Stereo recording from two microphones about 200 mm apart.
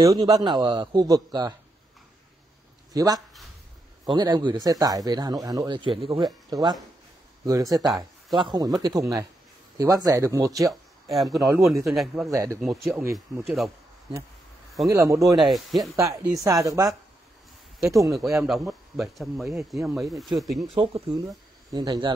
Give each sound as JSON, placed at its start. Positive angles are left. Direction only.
{"t": 0.3, "sound": "speech", "side_deg": -20}
{"t": 2.9, "sound": "speech", "side_deg": -20}
{"t": 10.7, "sound": "a sound", "side_deg": 0}
{"t": 11.2, "sound": "speech", "side_deg": -15}
{"t": 11.8, "sound": "speech", "side_deg": 0}
{"t": 12.3, "sound": "speech", "side_deg": -15}
{"t": 12.5, "sound": "speech", "side_deg": 0}
{"t": 14.9, "sound": "speech", "side_deg": -15}
{"t": 15.3, "sound": "speech", "side_deg": 0}
{"t": 16.0, "sound": "speech", "side_deg": -15}
{"t": 17.9, "sound": "speech", "side_deg": -15}
{"t": 18.4, "sound": "speech", "side_deg": 0}
{"t": 20.7, "sound": "speech", "side_deg": -25}